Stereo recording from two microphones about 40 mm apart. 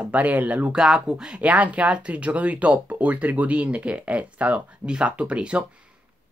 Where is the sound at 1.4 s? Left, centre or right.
Right.